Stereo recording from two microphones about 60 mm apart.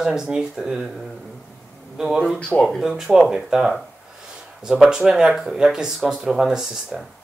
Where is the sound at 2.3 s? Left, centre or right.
Left.